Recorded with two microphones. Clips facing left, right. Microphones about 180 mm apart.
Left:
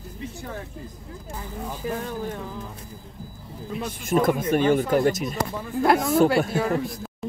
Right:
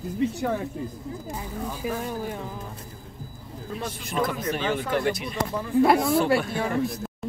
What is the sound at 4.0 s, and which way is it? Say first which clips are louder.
Speech: left 7 dB; 50° left (ahead or behind).